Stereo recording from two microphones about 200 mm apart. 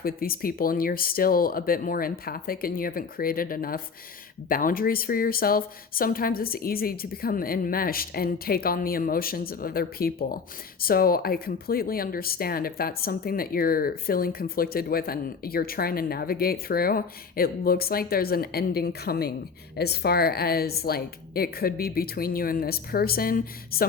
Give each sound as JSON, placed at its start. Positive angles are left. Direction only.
{"t": 0.0, "sound": "speech", "side_deg": 45}